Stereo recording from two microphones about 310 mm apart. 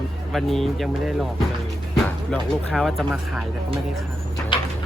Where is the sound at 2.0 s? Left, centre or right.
Centre.